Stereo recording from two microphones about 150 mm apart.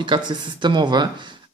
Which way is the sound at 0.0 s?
30° right (ahead or behind).